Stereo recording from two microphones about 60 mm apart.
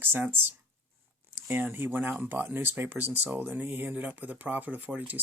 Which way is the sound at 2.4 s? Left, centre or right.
Right.